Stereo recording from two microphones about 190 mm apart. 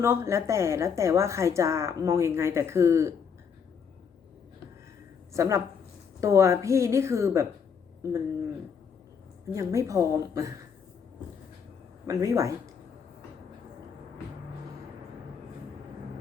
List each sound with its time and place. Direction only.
0.0 s speech: 15° right (ahead or behind)
5.3 s speech: 15° right (ahead or behind)
9.5 s speech: 15° right (ahead or behind)
12.0 s speech: 15° right (ahead or behind)